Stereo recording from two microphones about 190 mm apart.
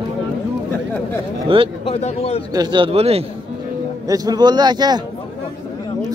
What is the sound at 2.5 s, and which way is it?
Speech, 25° right (ahead or behind).